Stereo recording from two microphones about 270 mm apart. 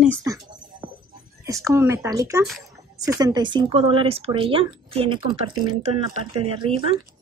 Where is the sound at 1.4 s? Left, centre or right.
Centre.